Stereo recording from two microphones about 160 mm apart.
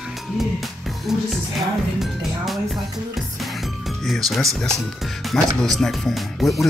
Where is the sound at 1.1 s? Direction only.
Centre (ahead or behind).